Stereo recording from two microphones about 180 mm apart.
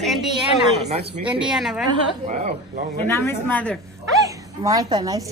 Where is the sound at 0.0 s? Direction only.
Centre (ahead or behind).